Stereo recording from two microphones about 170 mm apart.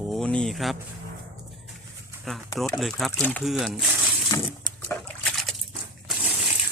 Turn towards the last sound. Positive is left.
turn(degrees=-5)  # may be behind; listen again after turning